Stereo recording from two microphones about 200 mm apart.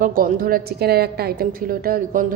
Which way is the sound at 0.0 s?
45° right (ahead or behind).